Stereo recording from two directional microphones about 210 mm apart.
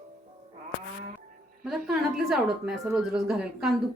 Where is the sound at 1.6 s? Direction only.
Centre (ahead or behind).